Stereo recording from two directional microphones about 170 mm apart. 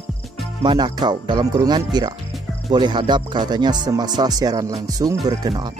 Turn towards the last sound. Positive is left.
turn(degrees=-25)  # may be behind; listen again after turning